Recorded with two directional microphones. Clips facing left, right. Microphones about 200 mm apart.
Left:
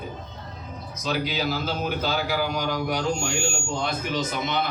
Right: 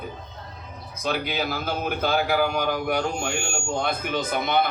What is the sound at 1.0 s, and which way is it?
A man's voice, 55° right (ahead or behind).